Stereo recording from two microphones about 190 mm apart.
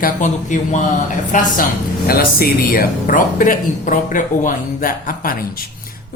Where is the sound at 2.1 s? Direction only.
55° left (ahead or behind).